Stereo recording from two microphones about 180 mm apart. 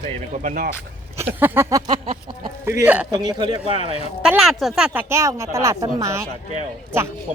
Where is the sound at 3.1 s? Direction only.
20° right (ahead or behind).